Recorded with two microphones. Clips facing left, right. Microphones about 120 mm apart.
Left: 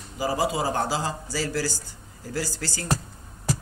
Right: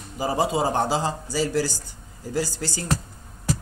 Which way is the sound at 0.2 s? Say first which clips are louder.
Right 2 dB; 25° right (ahead or behind).